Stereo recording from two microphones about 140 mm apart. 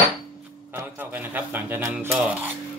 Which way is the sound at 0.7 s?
15° right (ahead or behind).